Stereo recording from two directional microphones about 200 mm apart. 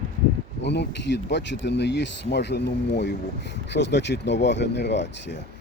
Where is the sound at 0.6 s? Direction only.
60° left (ahead or behind).